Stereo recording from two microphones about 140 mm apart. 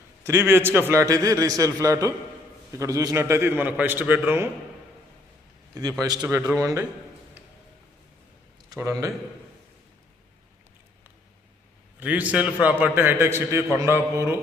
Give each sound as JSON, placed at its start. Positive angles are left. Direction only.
{"t": 0.3, "sound": "a man's voice", "side_deg": -20}
{"t": 6.2, "sound": "a man's voice", "side_deg": -15}
{"t": 8.8, "sound": "a man's voice", "side_deg": -25}
{"t": 11.9, "sound": "a man's voice", "side_deg": -10}